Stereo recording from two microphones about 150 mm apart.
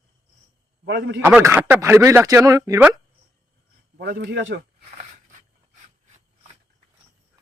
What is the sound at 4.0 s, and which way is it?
Speech, 90° right.